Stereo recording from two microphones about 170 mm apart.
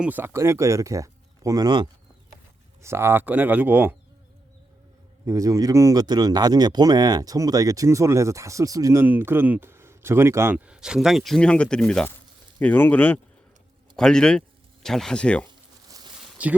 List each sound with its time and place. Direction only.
0.0 s speech: 10° right (ahead or behind)
2.8 s speech: 15° right (ahead or behind)
5.2 s speech: 20° right (ahead or behind); by 15.4 s 5° left (ahead or behind)
16.4 s speech: 10° right (ahead or behind)